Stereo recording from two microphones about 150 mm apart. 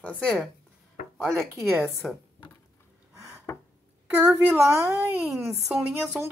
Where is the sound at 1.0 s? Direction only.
65° left (ahead or behind).